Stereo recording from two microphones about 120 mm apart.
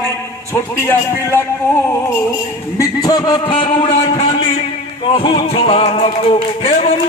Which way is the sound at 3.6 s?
45° left (ahead or behind).